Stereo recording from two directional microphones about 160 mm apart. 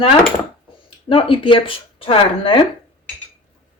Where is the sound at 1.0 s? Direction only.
35° left (ahead or behind).